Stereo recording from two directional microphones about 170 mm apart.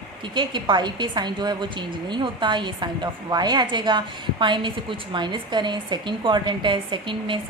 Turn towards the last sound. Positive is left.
turn(degrees=-30)  # may be behind; listen again after turning